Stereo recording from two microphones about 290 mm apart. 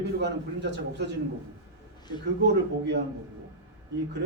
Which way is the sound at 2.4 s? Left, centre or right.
Right.